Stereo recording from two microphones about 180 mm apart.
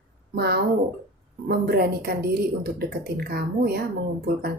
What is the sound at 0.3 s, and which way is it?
A woman's voice, 60° right (ahead or behind).